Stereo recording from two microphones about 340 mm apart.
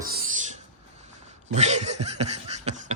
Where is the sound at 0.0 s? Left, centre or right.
Right.